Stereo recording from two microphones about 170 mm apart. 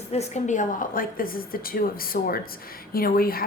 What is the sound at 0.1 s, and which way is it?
A woman's voice, 40° left (ahead or behind).